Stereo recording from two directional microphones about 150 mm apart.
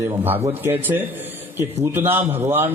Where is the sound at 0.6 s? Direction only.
15° right (ahead or behind).